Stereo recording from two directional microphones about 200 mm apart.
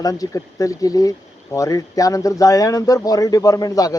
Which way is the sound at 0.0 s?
15° left (ahead or behind).